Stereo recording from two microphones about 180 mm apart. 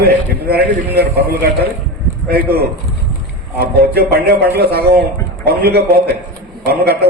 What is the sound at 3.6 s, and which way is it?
A man's voice, 60° right (ahead or behind).